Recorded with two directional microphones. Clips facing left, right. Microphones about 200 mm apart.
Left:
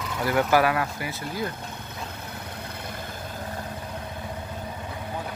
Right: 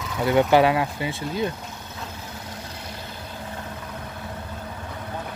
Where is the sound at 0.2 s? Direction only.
20° right (ahead or behind).